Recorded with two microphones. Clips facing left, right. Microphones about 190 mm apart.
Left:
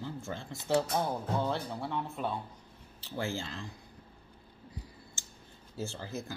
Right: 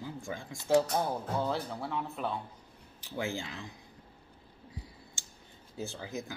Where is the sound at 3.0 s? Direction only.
15° right (ahead or behind).